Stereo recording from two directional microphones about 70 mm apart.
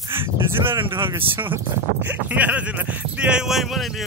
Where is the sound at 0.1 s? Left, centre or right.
Right.